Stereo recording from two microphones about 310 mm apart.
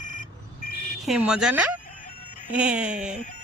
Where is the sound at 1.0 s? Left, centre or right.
Centre.